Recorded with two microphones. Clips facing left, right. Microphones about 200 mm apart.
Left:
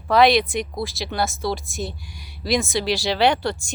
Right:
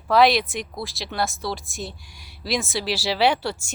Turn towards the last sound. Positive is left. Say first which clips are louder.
# left 2 dB
turn(degrees=-5)  # may be behind; listen again after turning